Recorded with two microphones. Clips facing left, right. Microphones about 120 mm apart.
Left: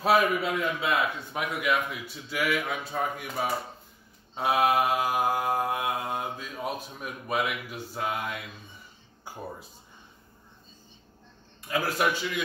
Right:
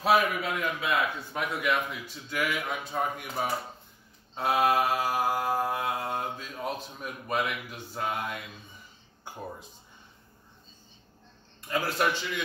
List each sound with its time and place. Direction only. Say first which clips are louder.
0.4 s a man's voice: left 2 dB; 30° left (ahead or behind)
1.3 s speech: left 1 dB; 10° left (ahead or behind)
4.4 s mantra: left 1 dB; 10° left (ahead or behind)
5.9 s speech: even; 5° left (ahead or behind)
11.6 s mantra: left 1 dB; 10° left (ahead or behind)